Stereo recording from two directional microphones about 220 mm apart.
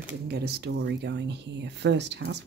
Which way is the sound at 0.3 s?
45° right (ahead or behind).